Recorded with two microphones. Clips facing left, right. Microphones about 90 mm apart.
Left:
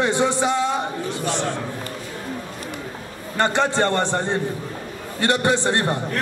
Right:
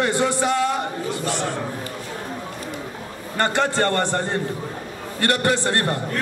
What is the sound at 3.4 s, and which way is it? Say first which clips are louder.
A man's voice: left 1 dB; 20° left (ahead or behind).